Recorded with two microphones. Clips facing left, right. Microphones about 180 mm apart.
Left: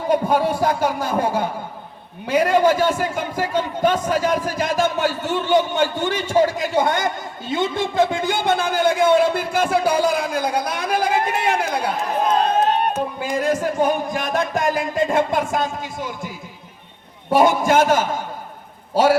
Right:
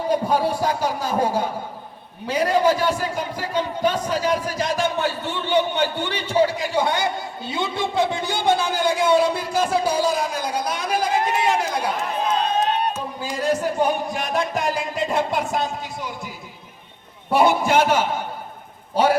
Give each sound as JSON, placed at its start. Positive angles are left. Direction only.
{"t": 0.1, "sound": "a man's voice", "side_deg": 55}
{"t": 17.3, "sound": "a man's voice", "side_deg": 45}